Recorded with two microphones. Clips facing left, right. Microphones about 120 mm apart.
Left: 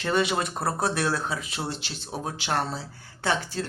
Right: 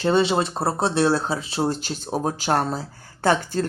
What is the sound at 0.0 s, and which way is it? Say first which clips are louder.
Speech: right 6 dB; 30° right (ahead or behind).